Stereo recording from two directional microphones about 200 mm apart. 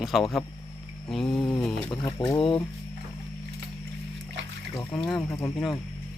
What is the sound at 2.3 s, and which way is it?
Speech, 25° left (ahead or behind).